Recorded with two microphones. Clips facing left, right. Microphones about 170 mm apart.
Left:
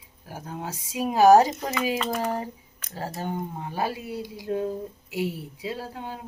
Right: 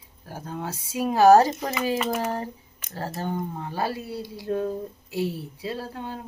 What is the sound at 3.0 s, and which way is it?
Speech, 15° left (ahead or behind).